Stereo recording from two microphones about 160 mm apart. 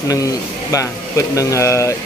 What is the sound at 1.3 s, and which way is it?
Speech, 20° left (ahead or behind).